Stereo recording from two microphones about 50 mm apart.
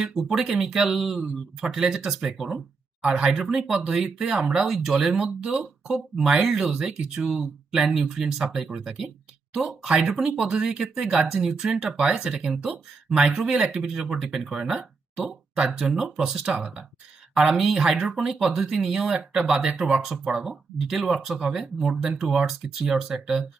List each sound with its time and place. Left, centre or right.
0.3 s speech: centre
3.1 s speech: right
3.3 s speech: centre
4.4 s speech: centre
20.2 s speech: centre
22.4 s speech: centre